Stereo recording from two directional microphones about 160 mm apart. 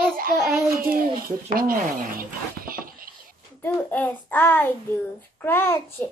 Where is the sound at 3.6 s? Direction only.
10° left (ahead or behind).